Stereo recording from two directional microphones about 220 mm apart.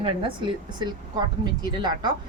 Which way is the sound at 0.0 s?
25° right (ahead or behind).